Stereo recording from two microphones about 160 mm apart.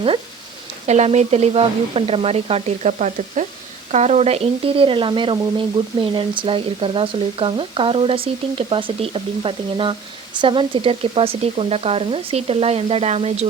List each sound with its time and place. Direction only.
0.9 s speech: 45° right (ahead or behind)